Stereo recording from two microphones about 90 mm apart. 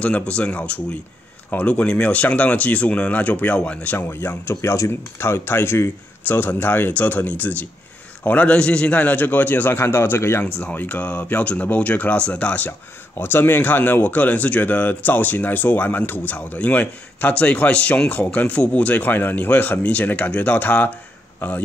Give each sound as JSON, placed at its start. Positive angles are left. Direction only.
{"t": 0.0, "sound": "speech", "side_deg": 15}
{"t": 4.1, "sound": "speech", "side_deg": 25}